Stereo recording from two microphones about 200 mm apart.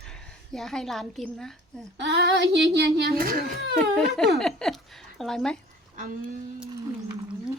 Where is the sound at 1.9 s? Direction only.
60° right (ahead or behind).